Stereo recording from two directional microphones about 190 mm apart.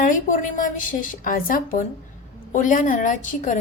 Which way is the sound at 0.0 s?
45° left (ahead or behind).